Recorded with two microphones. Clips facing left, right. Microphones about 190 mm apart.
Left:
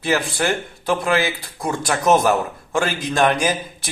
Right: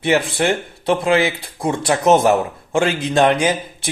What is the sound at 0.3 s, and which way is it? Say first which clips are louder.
Speech: right 3 dB; 25° right (ahead or behind).